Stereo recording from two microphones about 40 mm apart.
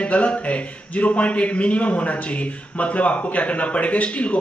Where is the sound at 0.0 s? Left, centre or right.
Left.